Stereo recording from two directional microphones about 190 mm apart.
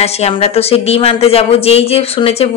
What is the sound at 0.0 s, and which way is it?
Speech, 35° left (ahead or behind).